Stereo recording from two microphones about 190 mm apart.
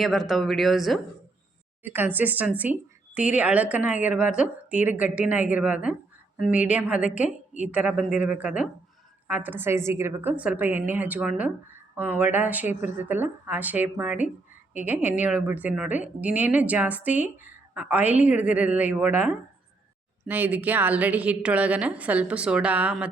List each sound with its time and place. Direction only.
0.0 s speech: centre (ahead or behind)
1.8 s a woman's voice: 10° right (ahead or behind)